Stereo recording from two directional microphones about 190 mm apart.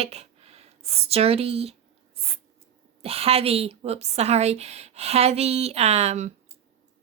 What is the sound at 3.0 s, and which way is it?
Speech, 30° right (ahead or behind).